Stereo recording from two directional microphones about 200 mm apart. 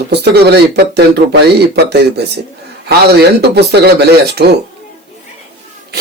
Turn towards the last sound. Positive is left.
turn(degrees=-55)  # may be behind; listen again after turning